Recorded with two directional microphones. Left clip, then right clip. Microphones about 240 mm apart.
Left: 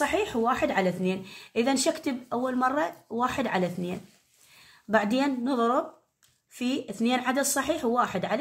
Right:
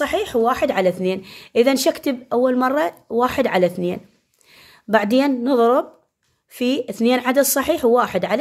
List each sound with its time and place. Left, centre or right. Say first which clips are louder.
0.0 s a woman's voice: right 7 dB; right